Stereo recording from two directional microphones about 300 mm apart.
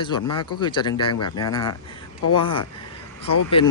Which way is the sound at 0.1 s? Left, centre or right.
Left.